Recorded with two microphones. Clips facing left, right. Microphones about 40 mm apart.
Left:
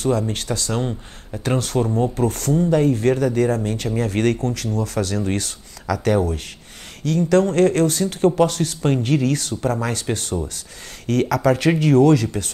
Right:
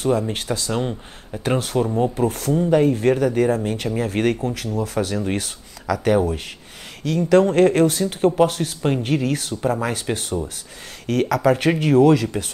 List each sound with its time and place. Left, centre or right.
0.0 s speech: centre
11.1 s speech: centre